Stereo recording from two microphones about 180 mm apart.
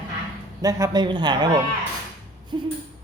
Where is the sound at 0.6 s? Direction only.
20° right (ahead or behind).